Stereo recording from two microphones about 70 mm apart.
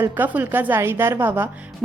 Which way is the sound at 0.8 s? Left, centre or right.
Right.